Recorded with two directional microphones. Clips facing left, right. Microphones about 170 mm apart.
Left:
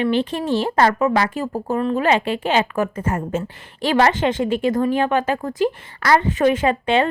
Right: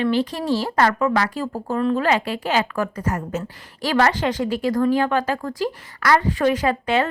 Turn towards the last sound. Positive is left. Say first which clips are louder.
# left 2 dB
turn(degrees=25)  # may be behind; listen again after turning